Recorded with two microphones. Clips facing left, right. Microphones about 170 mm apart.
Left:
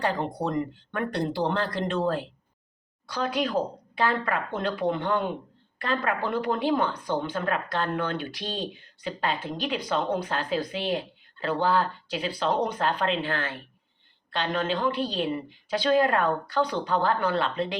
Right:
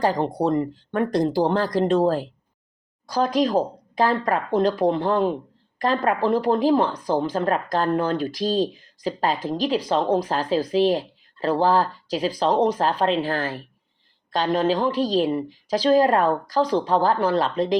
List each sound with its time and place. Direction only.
0.0 s a woman's voice: 35° right (ahead or behind)